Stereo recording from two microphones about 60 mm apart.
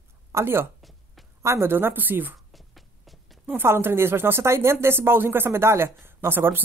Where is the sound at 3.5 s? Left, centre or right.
Right.